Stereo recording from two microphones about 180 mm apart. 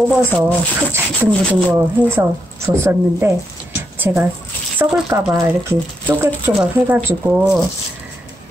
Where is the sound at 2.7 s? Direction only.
15° right (ahead or behind).